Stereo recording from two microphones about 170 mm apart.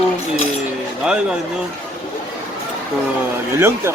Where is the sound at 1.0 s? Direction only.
5° right (ahead or behind).